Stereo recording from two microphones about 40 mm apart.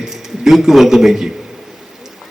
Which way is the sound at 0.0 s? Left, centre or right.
Centre.